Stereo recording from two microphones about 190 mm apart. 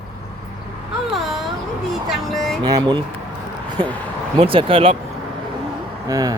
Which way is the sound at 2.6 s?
20° right (ahead or behind).